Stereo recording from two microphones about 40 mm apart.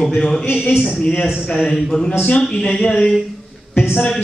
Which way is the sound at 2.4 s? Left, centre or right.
Centre.